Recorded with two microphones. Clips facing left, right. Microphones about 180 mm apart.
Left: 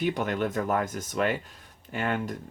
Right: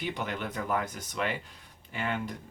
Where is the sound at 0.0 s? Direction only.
45° left (ahead or behind).